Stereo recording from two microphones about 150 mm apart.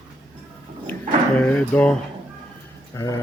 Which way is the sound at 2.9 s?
20° left (ahead or behind).